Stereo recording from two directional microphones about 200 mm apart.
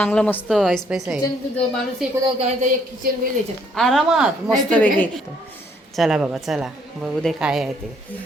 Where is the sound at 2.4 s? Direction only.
40° right (ahead or behind).